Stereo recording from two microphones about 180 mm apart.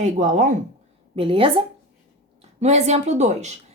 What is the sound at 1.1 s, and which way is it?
Speech, 30° right (ahead or behind).